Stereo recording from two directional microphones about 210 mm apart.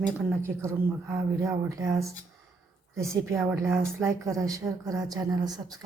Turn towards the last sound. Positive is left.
turn(degrees=-15)  # may be behind; listen again after turning